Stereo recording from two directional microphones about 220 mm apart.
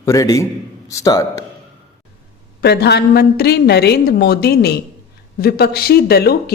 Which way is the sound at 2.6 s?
45° left (ahead or behind).